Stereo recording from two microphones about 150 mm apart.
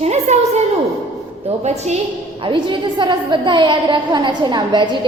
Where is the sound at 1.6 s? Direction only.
50° right (ahead or behind).